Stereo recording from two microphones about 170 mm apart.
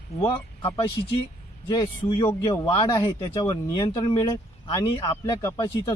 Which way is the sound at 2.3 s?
15° left (ahead or behind).